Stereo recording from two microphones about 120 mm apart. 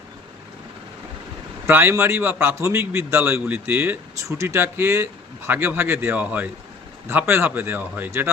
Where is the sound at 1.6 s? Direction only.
20° right (ahead or behind).